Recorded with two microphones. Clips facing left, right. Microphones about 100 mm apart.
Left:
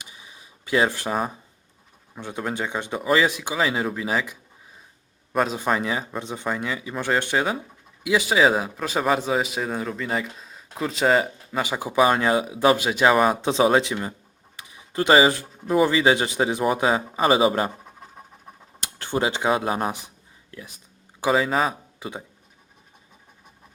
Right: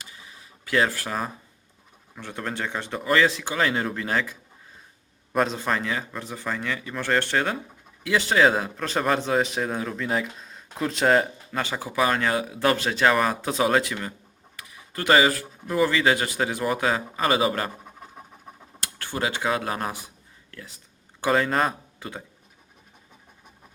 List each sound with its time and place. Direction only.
0.0 s a sound: 20° left (ahead or behind)
2.1 s a man's voice: 15° left (ahead or behind)
5.5 s a man's voice: 15° left (ahead or behind)
11.6 s speech: 15° left (ahead or behind)
18.8 s speech: 20° left (ahead or behind)
20.5 s a sound: 15° left (ahead or behind)
21.2 s a man's voice: 5° left (ahead or behind)
22.0 s speech: 15° left (ahead or behind)